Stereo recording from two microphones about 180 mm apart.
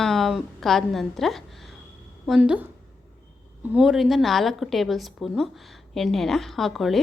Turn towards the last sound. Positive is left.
turn(degrees=0)  # may be behind; listen again after turning